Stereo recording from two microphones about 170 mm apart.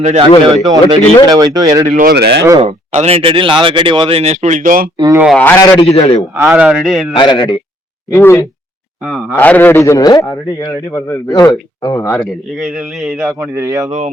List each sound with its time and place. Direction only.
0.2 s speech: 30° right (ahead or behind)
2.0 s speech: 65° right (ahead or behind)
2.6 s speech: 40° right (ahead or behind)
5.3 s a man's voice: 10° left (ahead or behind)
5.6 s a man's voice: 30° left (ahead or behind)
6.3 s a man's voice: 10° right (ahead or behind)
7.1 s a man's voice: 30° left (ahead or behind)
8.1 s a man's voice: 15° left (ahead or behind)
12.2 s a man's voice: centre (ahead or behind)
13.4 s speech: 20° right (ahead or behind)